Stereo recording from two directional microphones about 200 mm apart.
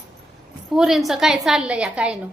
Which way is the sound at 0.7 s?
Centre (ahead or behind).